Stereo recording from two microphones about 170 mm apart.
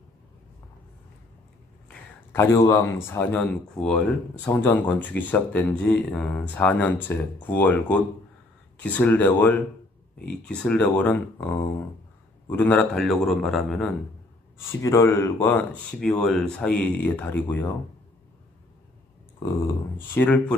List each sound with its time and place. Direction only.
1.9 s a man's voice: 15° left (ahead or behind)
14.6 s speech: 15° left (ahead or behind)
20.2 s speech: 10° left (ahead or behind)